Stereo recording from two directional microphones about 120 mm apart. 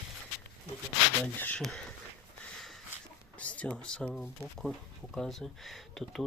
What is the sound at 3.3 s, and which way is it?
Speech, 10° left (ahead or behind).